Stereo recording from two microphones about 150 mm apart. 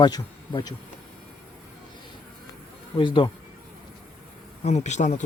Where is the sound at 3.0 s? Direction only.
35° left (ahead or behind).